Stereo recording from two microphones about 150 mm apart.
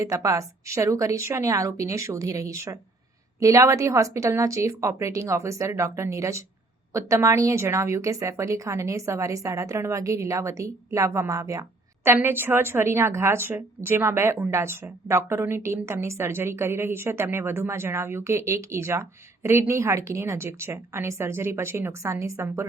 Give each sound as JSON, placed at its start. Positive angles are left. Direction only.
{"t": 0.0, "sound": "a woman's voice", "side_deg": -20}